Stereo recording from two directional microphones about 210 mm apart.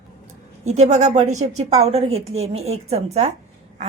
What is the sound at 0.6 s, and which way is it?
A woman's voice, 30° right (ahead or behind).